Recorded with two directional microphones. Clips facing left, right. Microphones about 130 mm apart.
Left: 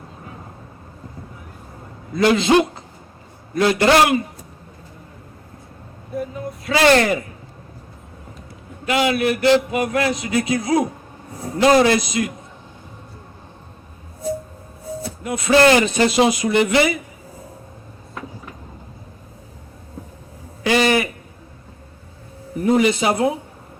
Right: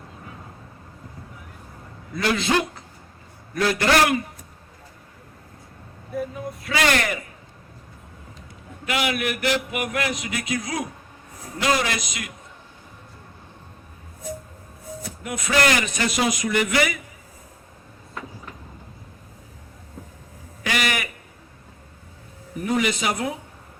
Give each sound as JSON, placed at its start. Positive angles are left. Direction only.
{"t": 2.1, "sound": "a man's voice", "side_deg": 25}
{"t": 6.7, "sound": "speech", "side_deg": 30}
{"t": 8.9, "sound": "a man's voice", "side_deg": 30}
{"t": 15.0, "sound": "speech", "side_deg": 25}
{"t": 20.7, "sound": "a sound", "side_deg": 30}
{"t": 22.6, "sound": "a man's voice", "side_deg": 30}